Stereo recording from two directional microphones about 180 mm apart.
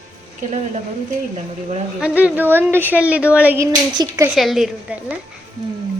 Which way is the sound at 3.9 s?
20° right (ahead or behind).